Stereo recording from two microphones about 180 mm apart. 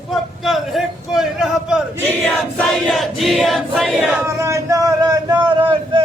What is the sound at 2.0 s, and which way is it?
Choir, 5° left (ahead or behind).